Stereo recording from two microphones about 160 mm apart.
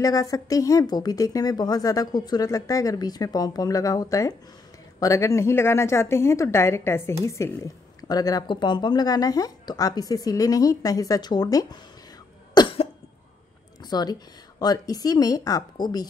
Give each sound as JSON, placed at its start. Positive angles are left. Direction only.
{"t": 0.0, "sound": "a woman's voice", "side_deg": 20}
{"t": 12.5, "sound": "cough", "side_deg": 30}
{"t": 13.8, "sound": "a woman's voice", "side_deg": 25}